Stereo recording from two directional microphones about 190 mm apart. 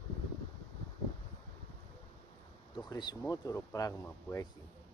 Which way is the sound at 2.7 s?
20° left (ahead or behind).